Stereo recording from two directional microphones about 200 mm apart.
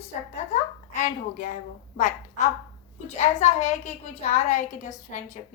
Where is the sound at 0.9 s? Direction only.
40° left (ahead or behind).